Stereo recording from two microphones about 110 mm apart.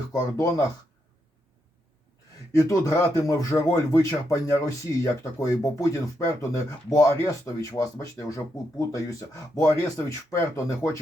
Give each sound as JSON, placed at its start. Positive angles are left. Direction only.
{"t": 0.1, "sound": "speech", "side_deg": 35}
{"t": 2.6, "sound": "speech", "side_deg": 30}